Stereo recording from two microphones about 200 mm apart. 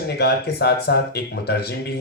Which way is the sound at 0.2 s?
55° left (ahead or behind).